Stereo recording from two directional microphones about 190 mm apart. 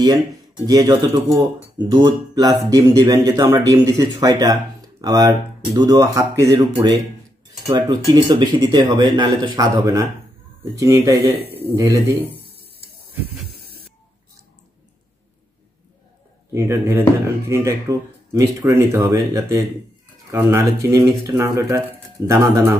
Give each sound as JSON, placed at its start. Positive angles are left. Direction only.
{"t": 0.0, "sound": "speech", "side_deg": -20}
{"t": 16.5, "sound": "speech", "side_deg": -15}